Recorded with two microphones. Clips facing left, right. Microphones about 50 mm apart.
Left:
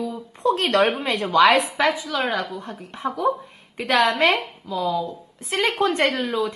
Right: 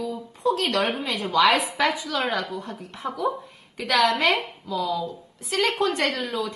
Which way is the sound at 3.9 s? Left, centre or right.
Left.